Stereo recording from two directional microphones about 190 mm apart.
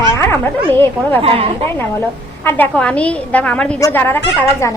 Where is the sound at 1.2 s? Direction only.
30° right (ahead or behind).